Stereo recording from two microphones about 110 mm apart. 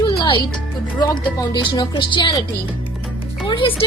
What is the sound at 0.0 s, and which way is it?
Music, 50° left (ahead or behind).